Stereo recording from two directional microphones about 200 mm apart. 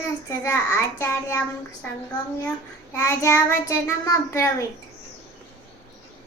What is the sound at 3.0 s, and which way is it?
Child singing, 15° left (ahead or behind).